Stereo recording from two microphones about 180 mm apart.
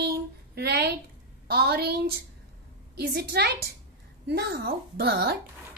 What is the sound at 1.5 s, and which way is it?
Speech, 60° right (ahead or behind).